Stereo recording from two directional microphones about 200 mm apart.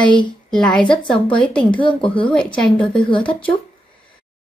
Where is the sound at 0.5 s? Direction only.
5° left (ahead or behind).